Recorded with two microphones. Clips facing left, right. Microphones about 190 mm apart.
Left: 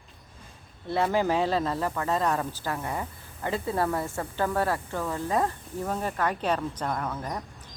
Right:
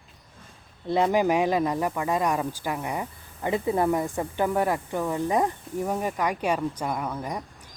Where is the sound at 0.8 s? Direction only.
15° right (ahead or behind).